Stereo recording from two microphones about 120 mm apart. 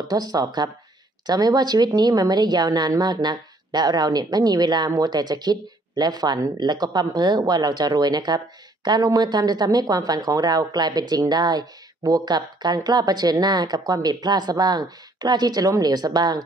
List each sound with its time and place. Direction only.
0.1 s a woman's voice: 30° right (ahead or behind)